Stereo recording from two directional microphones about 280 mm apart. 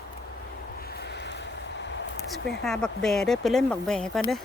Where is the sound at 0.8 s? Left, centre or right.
Left.